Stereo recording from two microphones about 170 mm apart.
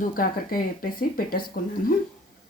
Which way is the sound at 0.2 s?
60° left (ahead or behind).